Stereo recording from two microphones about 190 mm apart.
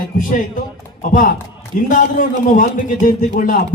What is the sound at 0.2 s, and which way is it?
A man's voice, 45° left (ahead or behind).